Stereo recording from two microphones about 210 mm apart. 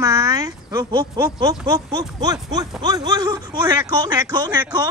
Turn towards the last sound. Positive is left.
turn(degrees=-20)  # may be behind; listen again after turning